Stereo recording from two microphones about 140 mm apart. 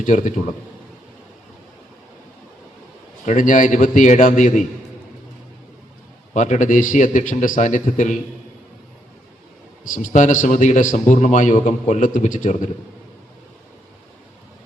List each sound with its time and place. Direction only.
0.0 s speech: 65° left (ahead or behind)
3.2 s speech: 65° left (ahead or behind)
6.3 s a man's voice: 65° left (ahead or behind)
9.9 s a man's voice: 65° left (ahead or behind)